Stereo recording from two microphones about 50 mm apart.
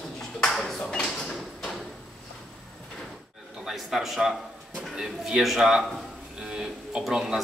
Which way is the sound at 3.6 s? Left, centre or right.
Centre.